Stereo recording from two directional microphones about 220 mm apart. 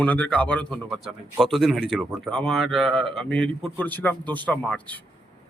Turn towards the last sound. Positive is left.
turn(degrees=5)  # may be behind; listen again after turning